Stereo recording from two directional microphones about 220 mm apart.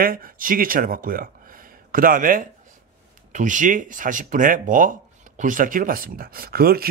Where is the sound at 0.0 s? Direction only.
40° right (ahead or behind).